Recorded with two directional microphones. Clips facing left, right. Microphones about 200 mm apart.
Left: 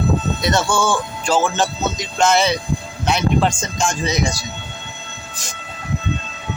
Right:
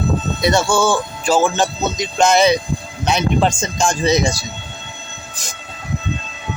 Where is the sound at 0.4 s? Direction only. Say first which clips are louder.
Right 4 dB; 10° right (ahead or behind).